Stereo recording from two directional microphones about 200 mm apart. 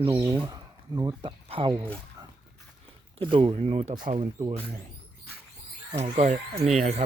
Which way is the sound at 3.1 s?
25° right (ahead or behind).